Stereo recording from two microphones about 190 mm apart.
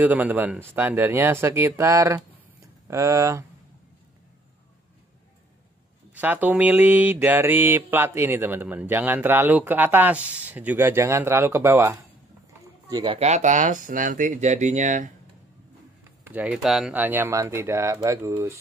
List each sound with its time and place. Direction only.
0.0 s mantra: 10° right (ahead or behind)
6.1 s mantra: 10° right (ahead or behind)
12.9 s speech: 30° right (ahead or behind)
16.3 s mantra: 5° right (ahead or behind)